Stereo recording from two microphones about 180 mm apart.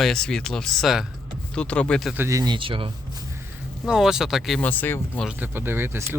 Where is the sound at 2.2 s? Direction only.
15° right (ahead or behind).